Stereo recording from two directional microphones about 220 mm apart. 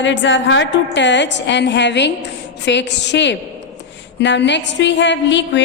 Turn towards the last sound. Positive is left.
turn(degrees=55)  # may be behind; listen again after turning